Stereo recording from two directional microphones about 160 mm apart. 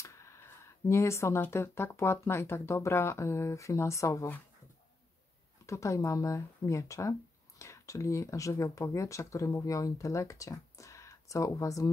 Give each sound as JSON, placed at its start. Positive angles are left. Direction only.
{"t": 0.0, "sound": "speech", "side_deg": 20}
{"t": 5.7, "sound": "speech", "side_deg": 20}